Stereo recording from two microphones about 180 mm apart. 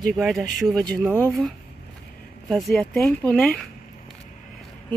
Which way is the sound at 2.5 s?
Centre (ahead or behind).